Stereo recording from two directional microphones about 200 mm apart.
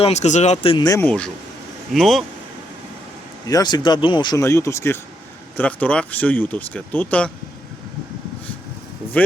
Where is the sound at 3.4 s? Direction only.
20° left (ahead or behind).